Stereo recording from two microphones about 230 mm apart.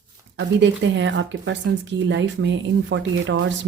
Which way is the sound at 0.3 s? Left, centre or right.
Right.